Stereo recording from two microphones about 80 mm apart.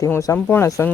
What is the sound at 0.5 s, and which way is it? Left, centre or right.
Speech, left.